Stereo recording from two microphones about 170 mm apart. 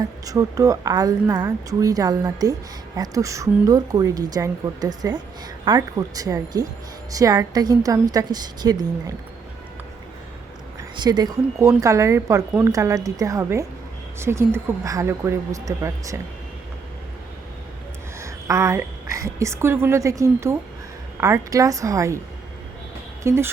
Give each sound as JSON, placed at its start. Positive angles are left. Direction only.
{"t": 0.0, "sound": "a woman's voice", "side_deg": -20}
{"t": 10.9, "sound": "a woman's voice", "side_deg": -25}
{"t": 18.2, "sound": "a woman's voice", "side_deg": -20}
{"t": 23.2, "sound": "a woman's voice", "side_deg": -15}